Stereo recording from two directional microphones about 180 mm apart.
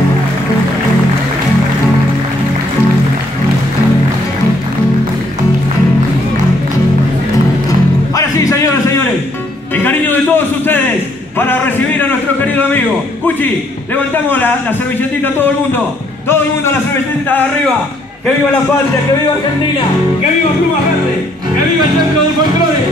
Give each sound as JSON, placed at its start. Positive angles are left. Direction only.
{"t": 8.2, "sound": "a sound", "side_deg": 15}
{"t": 13.9, "sound": "a man's voice", "side_deg": 10}
{"t": 16.3, "sound": "music", "side_deg": 10}